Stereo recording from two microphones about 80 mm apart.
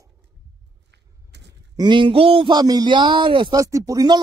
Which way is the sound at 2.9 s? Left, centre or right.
Right.